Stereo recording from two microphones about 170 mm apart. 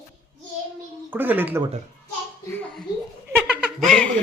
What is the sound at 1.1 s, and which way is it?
Speech, 10° right (ahead or behind).